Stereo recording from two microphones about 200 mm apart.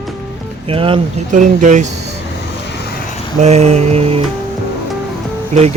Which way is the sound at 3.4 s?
35° right (ahead or behind).